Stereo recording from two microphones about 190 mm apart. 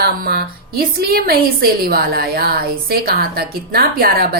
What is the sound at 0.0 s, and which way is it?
A woman's voice, 55° right (ahead or behind).